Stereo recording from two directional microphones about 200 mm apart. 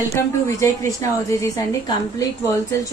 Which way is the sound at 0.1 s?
15° left (ahead or behind).